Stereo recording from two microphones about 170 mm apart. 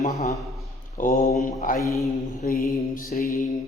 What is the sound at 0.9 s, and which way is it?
Mantra, 50° left (ahead or behind).